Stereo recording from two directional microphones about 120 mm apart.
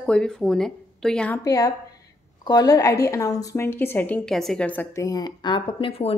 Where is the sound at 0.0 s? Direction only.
5° left (ahead or behind).